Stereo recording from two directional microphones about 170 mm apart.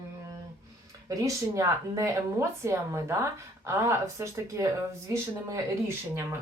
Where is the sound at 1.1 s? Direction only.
20° right (ahead or behind).